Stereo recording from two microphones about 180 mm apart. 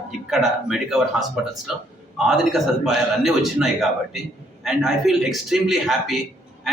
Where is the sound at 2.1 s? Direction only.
Centre (ahead or behind).